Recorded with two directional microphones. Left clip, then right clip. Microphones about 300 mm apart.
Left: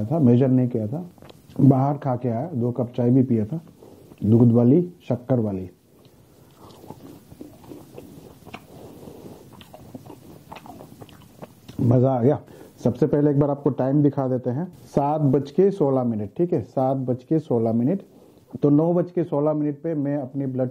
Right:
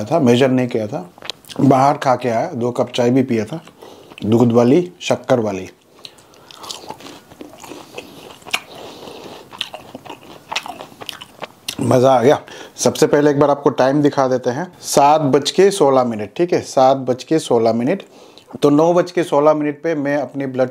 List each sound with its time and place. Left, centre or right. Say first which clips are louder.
0.0 s speech: right 7 dB; centre
2.5 s speech: right 8 dB; right
2.9 s speech: right 3 dB; centre
9.2 s biting: right 15 dB; centre
11.9 s speech: right 9 dB; centre